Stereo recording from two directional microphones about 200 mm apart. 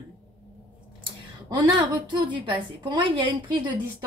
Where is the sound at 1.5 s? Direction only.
20° right (ahead or behind).